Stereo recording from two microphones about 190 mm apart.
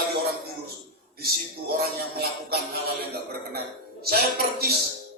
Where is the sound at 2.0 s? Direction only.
55° right (ahead or behind).